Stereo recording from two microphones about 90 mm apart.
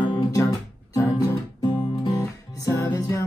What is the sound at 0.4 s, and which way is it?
Music, 40° left (ahead or behind).